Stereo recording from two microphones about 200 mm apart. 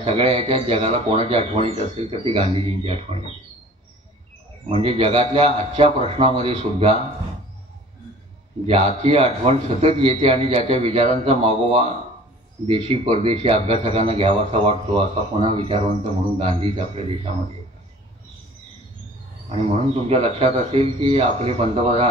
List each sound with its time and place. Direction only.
0.0 s a man's voice: 30° right (ahead or behind)
4.6 s a man's voice: 25° right (ahead or behind)
8.6 s a man's voice: 30° right (ahead or behind)
20.1 s a man's voice: 30° right (ahead or behind)